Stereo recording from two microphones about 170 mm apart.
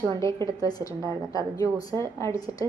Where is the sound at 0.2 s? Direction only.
20° left (ahead or behind).